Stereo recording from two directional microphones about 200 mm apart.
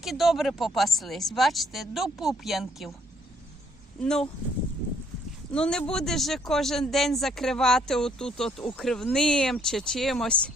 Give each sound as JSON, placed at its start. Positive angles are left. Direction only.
{"t": 0.0, "sound": "speech", "side_deg": 0}
{"t": 5.5, "sound": "speech", "side_deg": 5}